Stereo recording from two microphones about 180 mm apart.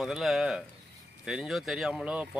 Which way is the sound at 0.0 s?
Centre (ahead or behind).